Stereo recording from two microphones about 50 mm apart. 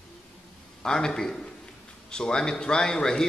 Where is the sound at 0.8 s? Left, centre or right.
Centre.